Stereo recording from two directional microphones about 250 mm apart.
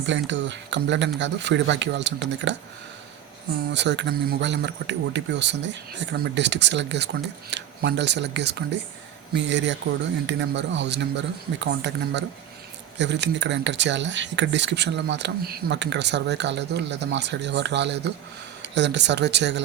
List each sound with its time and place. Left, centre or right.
0.0 s speech: right
3.7 s speech: right